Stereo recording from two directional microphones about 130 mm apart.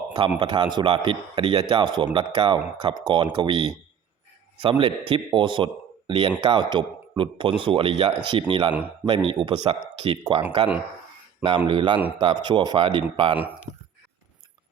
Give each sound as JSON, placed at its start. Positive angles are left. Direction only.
{"t": 0.3, "sound": "a man's voice", "side_deg": -35}
{"t": 11.4, "sound": "a man's voice", "side_deg": -35}